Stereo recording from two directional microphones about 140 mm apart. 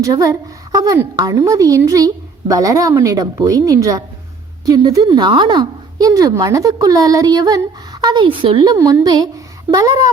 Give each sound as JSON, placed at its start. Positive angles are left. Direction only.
{"t": 0.0, "sound": "a woman's voice", "side_deg": -25}